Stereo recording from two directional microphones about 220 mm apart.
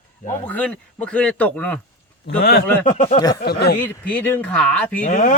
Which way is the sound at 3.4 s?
45° left (ahead or behind).